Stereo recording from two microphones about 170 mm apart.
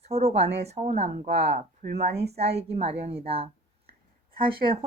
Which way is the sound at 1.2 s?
60° right (ahead or behind).